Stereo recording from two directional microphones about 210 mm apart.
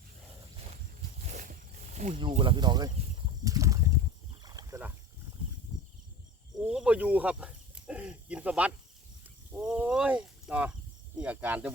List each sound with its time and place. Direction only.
1.2 s a sound: 35° right (ahead or behind); by 4.9 s 10° right (ahead or behind)
6.7 s snake: 5° right (ahead or behind)
9.6 s speech: 5° right (ahead or behind)